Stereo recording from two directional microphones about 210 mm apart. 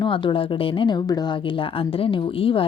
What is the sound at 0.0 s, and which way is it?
Speech, 25° left (ahead or behind).